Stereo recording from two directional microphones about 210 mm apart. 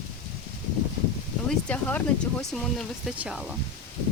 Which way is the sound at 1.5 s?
5° left (ahead or behind).